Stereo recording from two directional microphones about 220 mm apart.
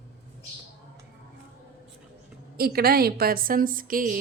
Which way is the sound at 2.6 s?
45° right (ahead or behind).